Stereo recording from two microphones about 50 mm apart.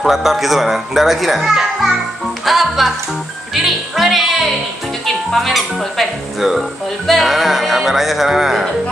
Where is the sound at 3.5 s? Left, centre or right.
Centre.